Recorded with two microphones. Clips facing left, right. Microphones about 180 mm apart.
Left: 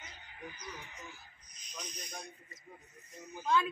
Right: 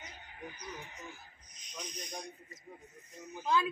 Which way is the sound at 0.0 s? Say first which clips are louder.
Right 1 dB; 40° right (ahead or behind).